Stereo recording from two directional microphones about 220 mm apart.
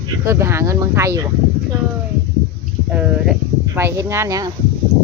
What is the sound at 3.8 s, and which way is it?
Speech, 15° right (ahead or behind).